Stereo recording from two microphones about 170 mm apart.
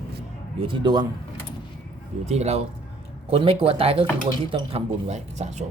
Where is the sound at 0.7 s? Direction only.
25° right (ahead or behind).